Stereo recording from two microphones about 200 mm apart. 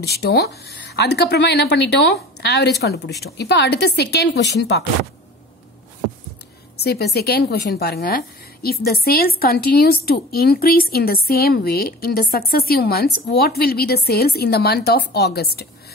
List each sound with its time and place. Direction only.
0.0 s speech: 55° left (ahead or behind)
6.8 s a woman's voice: 55° left (ahead or behind)